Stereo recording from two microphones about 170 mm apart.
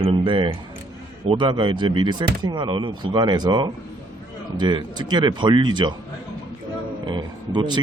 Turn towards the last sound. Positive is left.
turn(degrees=-25)  # may be behind; listen again after turning